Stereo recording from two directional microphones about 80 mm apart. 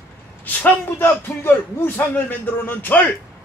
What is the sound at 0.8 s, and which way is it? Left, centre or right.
Speech, left.